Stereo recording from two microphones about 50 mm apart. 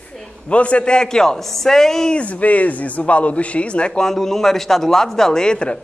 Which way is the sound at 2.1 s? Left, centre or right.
Left.